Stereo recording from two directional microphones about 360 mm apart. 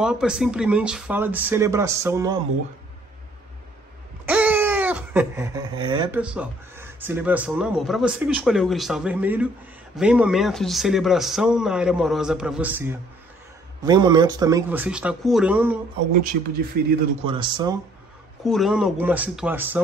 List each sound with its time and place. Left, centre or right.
0.0 s speech: centre
4.3 s speech: centre
16.8 s a man's voice: right
17.2 s speech: centre
18.4 s speech: centre